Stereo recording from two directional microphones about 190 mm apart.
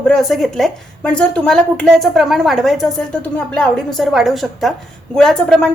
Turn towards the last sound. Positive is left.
turn(degrees=5)  # may be behind; listen again after turning